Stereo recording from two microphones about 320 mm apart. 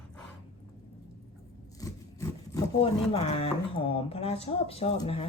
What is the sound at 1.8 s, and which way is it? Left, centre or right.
Speech, centre.